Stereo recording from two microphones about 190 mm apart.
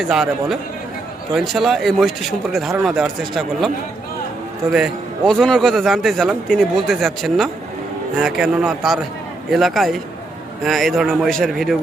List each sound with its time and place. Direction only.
0.0 s a man's voice: centre (ahead or behind)
4.7 s a man's voice: centre (ahead or behind)